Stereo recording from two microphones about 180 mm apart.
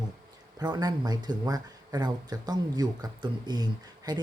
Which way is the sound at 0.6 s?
20° right (ahead or behind).